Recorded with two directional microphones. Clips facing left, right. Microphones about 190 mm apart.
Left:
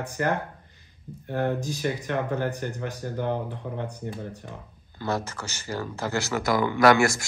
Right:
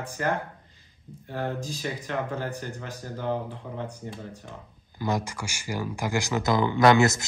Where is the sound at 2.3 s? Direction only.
55° left (ahead or behind).